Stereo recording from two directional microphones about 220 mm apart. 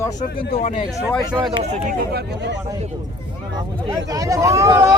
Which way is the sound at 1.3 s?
20° right (ahead or behind).